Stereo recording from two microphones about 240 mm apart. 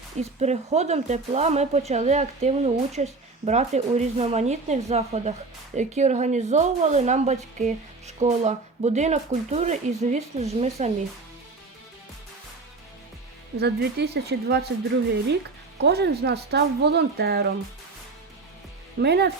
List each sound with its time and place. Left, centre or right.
0.2 s speech: right
13.6 s speech: right
18.9 s speech: right